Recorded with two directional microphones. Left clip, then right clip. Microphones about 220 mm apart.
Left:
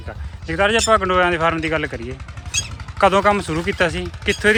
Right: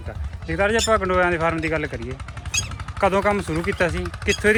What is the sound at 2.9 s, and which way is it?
Speech, 10° left (ahead or behind).